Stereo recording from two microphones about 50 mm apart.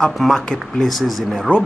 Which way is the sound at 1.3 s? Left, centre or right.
Centre.